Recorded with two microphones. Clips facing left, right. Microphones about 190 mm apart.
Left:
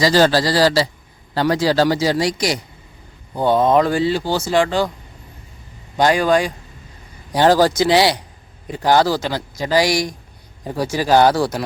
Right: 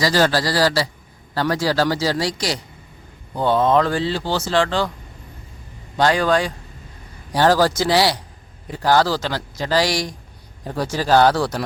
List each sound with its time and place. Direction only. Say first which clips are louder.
0.0 s a man's voice: left 4 dB; 25° left (ahead or behind)
6.0 s speech: left 2 dB; 15° left (ahead or behind)